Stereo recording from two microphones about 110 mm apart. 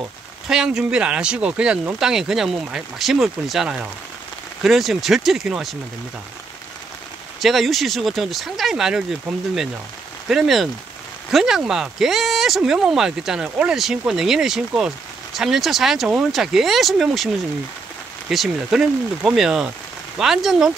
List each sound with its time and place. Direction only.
0.5 s speech: 5° right (ahead or behind)
7.3 s speech: centre (ahead or behind)
10.2 s speech: 5° right (ahead or behind)
18.3 s speech: centre (ahead or behind)